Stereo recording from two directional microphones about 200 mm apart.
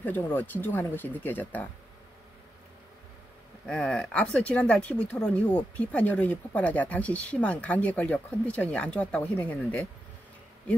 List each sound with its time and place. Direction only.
0.0 s speech: 10° left (ahead or behind)
3.6 s speech: 5° left (ahead or behind)